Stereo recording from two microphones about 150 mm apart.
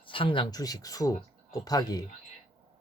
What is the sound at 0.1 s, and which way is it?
Speech, 35° left (ahead or behind).